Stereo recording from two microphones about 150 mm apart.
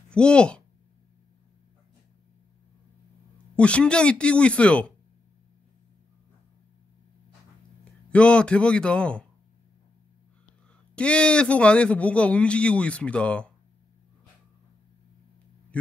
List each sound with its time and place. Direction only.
0.1 s speech: 5° left (ahead or behind)
3.5 s a man's voice: 10° left (ahead or behind)
8.1 s a man's voice: 5° left (ahead or behind)
11.0 s a man's voice: 5° left (ahead or behind)
15.7 s mantra: 10° left (ahead or behind)